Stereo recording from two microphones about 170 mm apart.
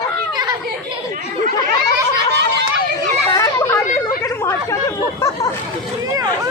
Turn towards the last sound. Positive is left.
turn(degrees=15)  # may be behind; listen again after turning